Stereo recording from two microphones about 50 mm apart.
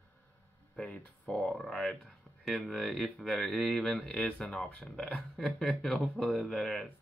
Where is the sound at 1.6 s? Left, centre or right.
Centre.